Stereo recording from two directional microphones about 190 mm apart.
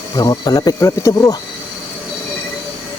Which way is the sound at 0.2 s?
20° left (ahead or behind).